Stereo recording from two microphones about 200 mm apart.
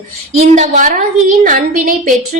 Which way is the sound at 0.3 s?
35° right (ahead or behind).